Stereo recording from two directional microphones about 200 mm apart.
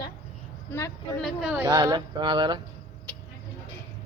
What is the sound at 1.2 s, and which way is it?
Speech, centre (ahead or behind).